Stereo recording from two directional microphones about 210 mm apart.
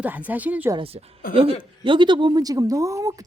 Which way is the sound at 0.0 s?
10° right (ahead or behind).